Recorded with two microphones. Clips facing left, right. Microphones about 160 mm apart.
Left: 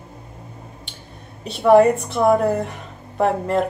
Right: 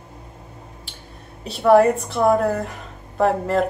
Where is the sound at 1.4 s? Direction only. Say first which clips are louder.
Left 1 dB; centre (ahead or behind).